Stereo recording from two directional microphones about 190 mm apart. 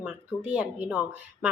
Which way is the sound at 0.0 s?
5° right (ahead or behind).